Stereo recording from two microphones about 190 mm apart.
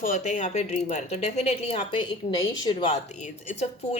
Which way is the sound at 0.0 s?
40° left (ahead or behind).